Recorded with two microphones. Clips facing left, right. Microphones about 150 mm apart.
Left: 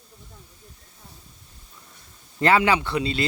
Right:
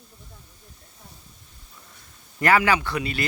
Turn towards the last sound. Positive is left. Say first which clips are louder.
# left 3 dB
turn(degrees=25)  # may be behind; listen again after turning